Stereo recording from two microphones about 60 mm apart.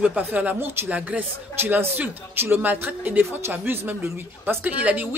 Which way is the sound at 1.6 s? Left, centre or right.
Right.